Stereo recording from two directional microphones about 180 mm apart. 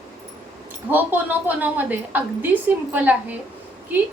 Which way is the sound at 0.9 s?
10° right (ahead or behind).